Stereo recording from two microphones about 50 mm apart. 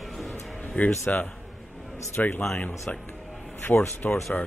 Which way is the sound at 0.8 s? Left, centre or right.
Left.